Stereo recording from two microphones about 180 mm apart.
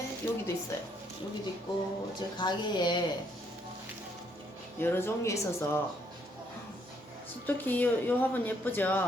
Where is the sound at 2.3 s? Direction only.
25° left (ahead or behind).